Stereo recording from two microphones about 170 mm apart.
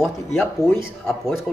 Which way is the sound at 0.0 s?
Centre (ahead or behind).